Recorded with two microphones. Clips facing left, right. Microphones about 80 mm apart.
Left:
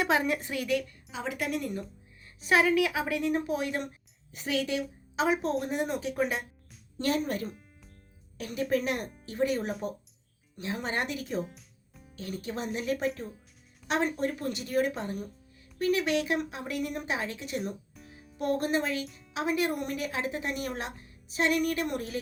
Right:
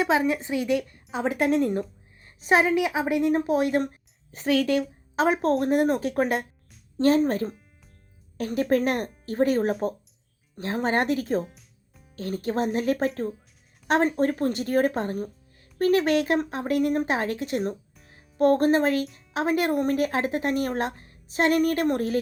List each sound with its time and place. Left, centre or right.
0.0 s a woman's voice: centre; by 4.4 s right
4.4 s speech: right
5.1 s a woman's voice: right
7.0 s a woman's voice: right
11.4 s music: centre
12.1 s a woman's voice: right